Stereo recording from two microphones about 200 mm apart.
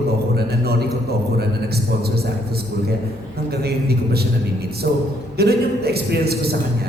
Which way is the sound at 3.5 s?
50° right (ahead or behind).